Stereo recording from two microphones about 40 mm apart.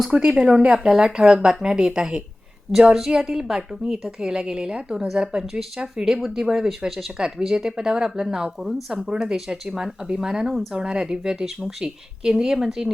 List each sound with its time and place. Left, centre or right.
0.1 s a woman's voice: right
5.4 s speech: centre
5.8 s a woman's voice: centre
7.2 s a woman's voice: right